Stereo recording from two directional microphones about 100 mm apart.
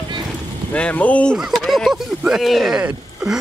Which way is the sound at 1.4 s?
Centre (ahead or behind).